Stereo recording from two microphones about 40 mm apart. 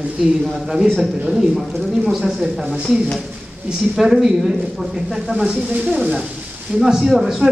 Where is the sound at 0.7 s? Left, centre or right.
Centre.